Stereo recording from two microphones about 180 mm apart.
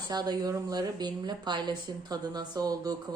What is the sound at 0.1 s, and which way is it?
A woman's voice, 20° right (ahead or behind).